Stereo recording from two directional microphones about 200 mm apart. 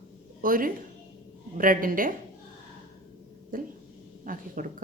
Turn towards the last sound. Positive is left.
turn(degrees=-45)  # may be behind; listen again after turning